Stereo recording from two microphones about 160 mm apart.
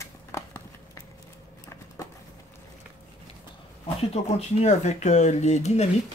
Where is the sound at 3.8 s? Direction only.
40° left (ahead or behind).